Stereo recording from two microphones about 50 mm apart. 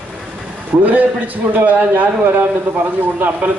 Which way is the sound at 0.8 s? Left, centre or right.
Right.